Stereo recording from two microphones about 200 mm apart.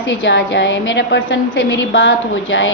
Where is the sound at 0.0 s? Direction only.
65° left (ahead or behind).